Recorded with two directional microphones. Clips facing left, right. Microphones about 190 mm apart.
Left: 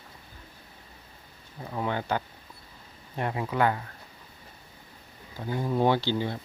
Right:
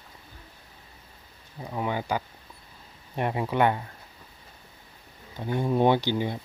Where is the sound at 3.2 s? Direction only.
20° right (ahead or behind).